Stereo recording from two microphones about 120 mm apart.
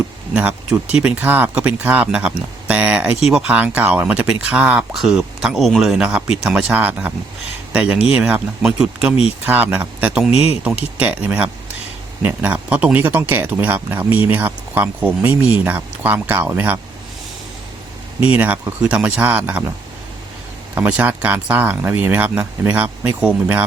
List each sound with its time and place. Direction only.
0.3 s speech: 10° right (ahead or behind)
18.2 s speech: 10° right (ahead or behind)
20.7 s speech: 10° right (ahead or behind)